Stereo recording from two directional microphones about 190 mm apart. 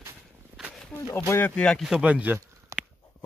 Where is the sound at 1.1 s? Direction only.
10° left (ahead or behind); by 2.4 s 10° right (ahead or behind).